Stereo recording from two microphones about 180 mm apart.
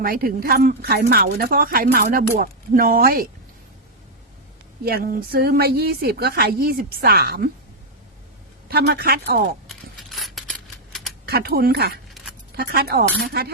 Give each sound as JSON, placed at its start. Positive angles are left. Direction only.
{"t": 0.0, "sound": "a woman's voice", "side_deg": -55}
{"t": 4.9, "sound": "a woman's voice", "side_deg": -60}
{"t": 8.7, "sound": "a woman's voice", "side_deg": -60}
{"t": 9.6, "sound": "a sound", "side_deg": 0}
{"t": 11.3, "sound": "a woman's voice", "side_deg": -60}